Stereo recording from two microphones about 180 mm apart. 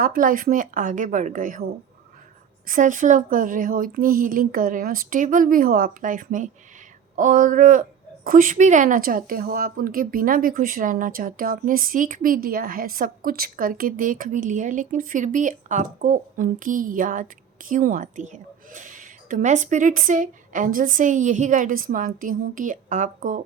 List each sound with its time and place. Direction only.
0.0 s a woman's voice: 50° right (ahead or behind)